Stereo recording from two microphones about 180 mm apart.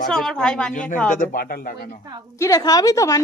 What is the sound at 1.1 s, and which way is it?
Speech, 50° left (ahead or behind).